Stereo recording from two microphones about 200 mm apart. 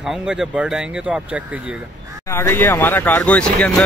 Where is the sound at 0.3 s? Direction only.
5° right (ahead or behind).